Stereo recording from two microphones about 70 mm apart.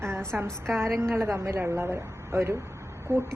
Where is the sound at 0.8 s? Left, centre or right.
Right.